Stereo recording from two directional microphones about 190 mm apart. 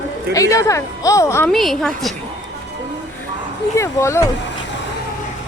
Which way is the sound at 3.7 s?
15° left (ahead or behind).